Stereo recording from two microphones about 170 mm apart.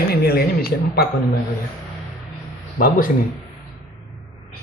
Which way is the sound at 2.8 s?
55° left (ahead or behind).